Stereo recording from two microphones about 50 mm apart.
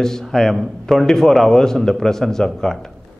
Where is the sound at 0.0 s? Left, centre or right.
Centre.